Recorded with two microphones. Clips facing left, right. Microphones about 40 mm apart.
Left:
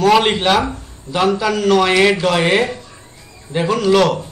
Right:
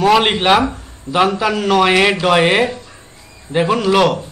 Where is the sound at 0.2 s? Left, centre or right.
Centre.